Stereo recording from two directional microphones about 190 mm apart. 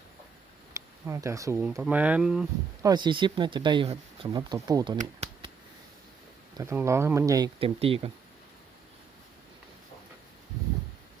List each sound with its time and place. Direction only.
0.7 s speech: 15° right (ahead or behind)
2.8 s speech: 25° right (ahead or behind)
4.9 s a sound: 30° right (ahead or behind)
6.6 s speech: 15° right (ahead or behind)